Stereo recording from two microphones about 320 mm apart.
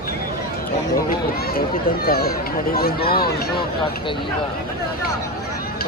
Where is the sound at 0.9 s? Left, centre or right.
Left.